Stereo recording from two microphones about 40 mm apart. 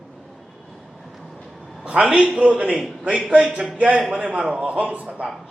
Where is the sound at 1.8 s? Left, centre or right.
Right.